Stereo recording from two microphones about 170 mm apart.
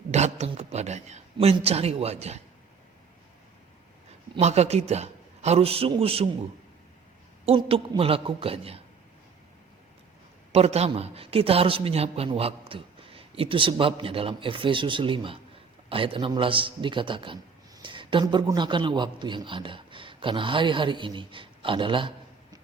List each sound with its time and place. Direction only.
0.1 s a man's voice: 40° right (ahead or behind)
4.4 s a man's voice: 40° right (ahead or behind)
7.4 s a man's voice: 35° right (ahead or behind)
10.5 s a man's voice: 35° right (ahead or behind)